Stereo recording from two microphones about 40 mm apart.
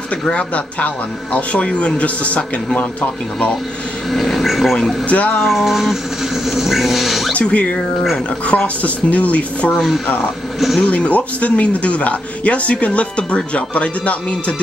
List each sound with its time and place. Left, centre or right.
0.3 s speech: left
4.1 s dog: centre
5.0 s speech: left
5.4 s dog: centre
7.3 s speech: left
10.8 s speech: left